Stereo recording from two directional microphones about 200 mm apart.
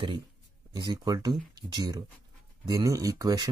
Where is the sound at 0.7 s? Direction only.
20° right (ahead or behind).